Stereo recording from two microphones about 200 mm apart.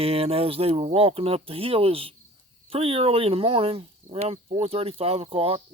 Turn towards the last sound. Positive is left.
turn(degrees=-30)  # may be behind; listen again after turning